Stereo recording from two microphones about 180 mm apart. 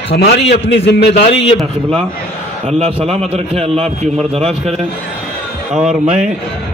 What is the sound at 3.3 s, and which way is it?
A man's voice, 35° right (ahead or behind).